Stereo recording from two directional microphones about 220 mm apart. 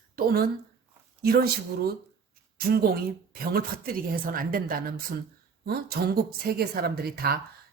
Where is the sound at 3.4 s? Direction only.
40° right (ahead or behind).